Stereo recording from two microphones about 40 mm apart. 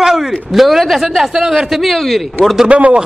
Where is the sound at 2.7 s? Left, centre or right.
Right.